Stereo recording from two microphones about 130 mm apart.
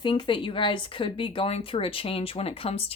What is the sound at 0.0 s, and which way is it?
Speech, 40° left (ahead or behind).